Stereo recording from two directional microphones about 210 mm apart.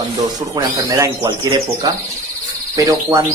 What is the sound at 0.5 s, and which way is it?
A man's voice, 20° right (ahead or behind).